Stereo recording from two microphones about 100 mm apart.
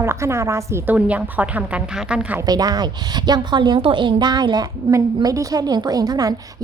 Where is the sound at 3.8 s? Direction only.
60° right (ahead or behind).